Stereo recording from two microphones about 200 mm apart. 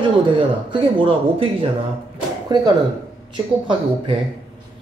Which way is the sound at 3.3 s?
25° right (ahead or behind).